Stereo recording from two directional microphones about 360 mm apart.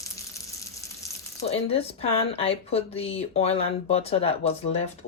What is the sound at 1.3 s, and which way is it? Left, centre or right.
A woman's voice, centre.